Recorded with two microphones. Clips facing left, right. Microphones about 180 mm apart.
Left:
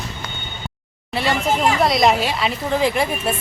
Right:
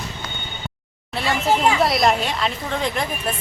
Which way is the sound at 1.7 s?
Centre (ahead or behind).